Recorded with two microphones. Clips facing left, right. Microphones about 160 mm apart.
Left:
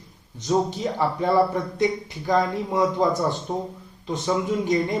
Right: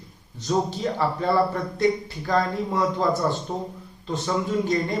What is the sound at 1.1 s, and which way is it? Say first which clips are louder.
Speech: left 4 dB; 15° left (ahead or behind).